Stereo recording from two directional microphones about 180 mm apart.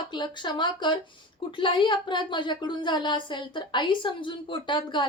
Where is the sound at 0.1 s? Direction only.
25° left (ahead or behind).